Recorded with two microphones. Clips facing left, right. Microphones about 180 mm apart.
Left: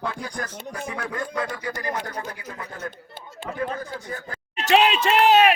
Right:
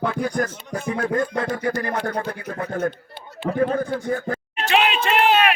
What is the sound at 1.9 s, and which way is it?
Speech, 60° right (ahead or behind).